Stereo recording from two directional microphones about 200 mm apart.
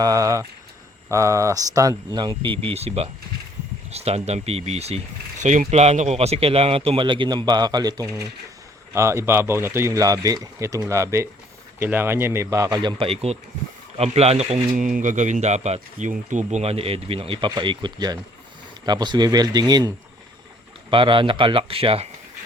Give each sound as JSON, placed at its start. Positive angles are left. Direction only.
{"t": 0.0, "sound": "speech", "side_deg": -15}
{"t": 13.0, "sound": "speech", "side_deg": -30}
{"t": 20.9, "sound": "speech", "side_deg": -25}